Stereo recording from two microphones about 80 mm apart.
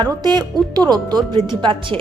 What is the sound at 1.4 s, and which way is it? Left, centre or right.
Speech, right.